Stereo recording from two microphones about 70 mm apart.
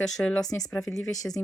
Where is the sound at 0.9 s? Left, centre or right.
Left.